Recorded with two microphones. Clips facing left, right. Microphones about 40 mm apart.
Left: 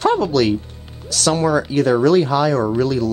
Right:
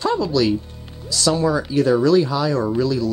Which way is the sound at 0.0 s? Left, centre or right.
Left.